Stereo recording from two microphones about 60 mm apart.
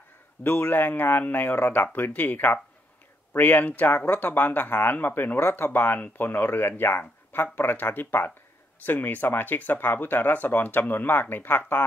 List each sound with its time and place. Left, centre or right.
0.4 s speech: left